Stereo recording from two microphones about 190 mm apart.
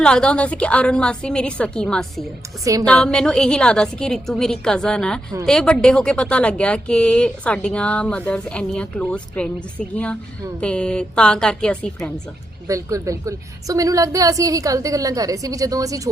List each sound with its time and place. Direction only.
0.0 s speech: 5° left (ahead or behind)
12.6 s a woman's voice: 15° right (ahead or behind)